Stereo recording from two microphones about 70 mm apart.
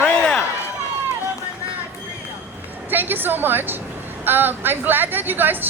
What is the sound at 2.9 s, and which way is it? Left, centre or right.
A woman's voice, right.